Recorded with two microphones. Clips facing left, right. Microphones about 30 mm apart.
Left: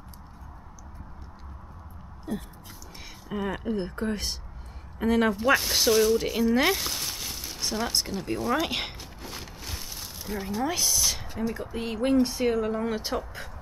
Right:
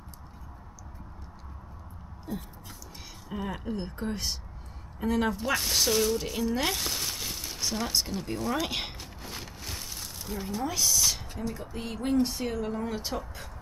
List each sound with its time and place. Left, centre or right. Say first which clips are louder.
2.3 s dog: left 4 dB; centre
3.3 s speech: left 4 dB; centre
5.3 s speech: left 5 dB; centre
6.7 s a sound: left 3 dB; centre
10.8 s speech: even; centre